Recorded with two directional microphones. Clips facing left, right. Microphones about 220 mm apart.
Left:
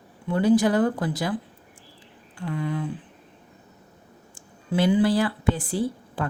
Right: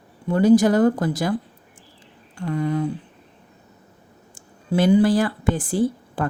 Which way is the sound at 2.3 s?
40° right (ahead or behind).